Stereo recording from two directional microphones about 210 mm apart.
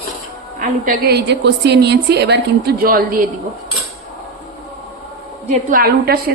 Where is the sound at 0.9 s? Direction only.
50° right (ahead or behind).